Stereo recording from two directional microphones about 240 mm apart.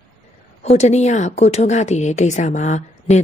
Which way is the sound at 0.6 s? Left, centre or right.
Left.